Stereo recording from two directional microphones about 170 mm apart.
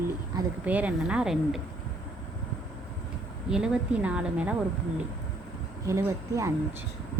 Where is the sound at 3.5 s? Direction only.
5° right (ahead or behind).